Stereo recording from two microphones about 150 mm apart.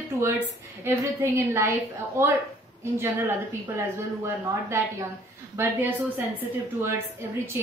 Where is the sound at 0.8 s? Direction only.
15° right (ahead or behind).